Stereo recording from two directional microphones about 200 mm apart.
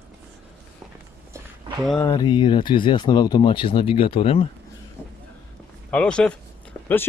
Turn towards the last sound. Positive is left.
turn(degrees=10)  # may be behind; listen again after turning